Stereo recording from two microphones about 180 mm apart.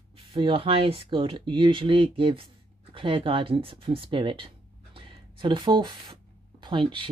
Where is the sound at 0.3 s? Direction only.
30° right (ahead or behind).